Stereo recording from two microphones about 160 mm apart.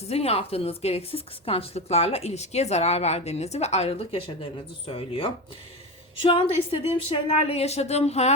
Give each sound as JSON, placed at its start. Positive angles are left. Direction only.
{"t": 0.1, "sound": "a woman's voice", "side_deg": 40}